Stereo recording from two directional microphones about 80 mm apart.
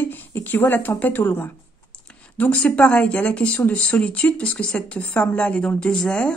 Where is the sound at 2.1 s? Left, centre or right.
Centre.